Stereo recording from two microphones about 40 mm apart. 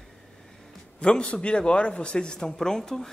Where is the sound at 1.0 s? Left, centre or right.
Left.